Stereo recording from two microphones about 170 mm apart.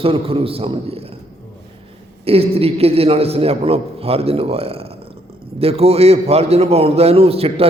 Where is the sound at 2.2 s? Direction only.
35° right (ahead or behind).